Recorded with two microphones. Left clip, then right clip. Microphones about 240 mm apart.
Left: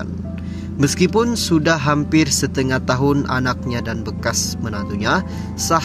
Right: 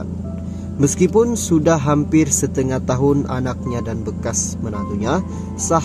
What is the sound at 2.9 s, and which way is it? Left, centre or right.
Speech, left.